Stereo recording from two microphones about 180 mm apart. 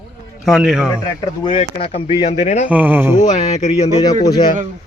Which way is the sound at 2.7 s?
10° right (ahead or behind).